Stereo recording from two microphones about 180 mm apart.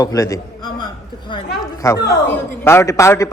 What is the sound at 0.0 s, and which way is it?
A man's voice, 20° left (ahead or behind).